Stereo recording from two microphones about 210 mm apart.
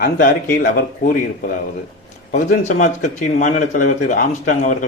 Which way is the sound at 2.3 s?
35° left (ahead or behind).